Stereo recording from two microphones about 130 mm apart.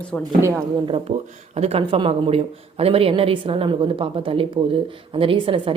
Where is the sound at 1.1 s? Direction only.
55° right (ahead or behind).